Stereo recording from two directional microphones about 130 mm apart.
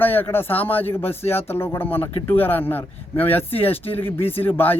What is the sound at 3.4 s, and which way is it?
Speech, 45° left (ahead or behind).